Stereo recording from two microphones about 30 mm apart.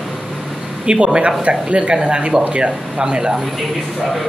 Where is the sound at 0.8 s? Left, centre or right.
Right.